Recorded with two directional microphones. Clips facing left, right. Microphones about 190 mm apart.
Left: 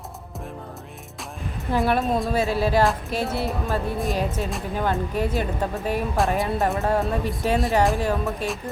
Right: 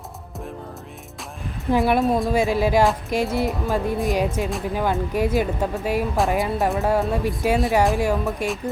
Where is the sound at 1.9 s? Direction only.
15° right (ahead or behind).